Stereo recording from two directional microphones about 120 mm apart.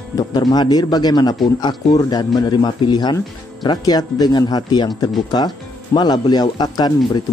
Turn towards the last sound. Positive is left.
turn(degrees=35)  # may be behind; listen again after turning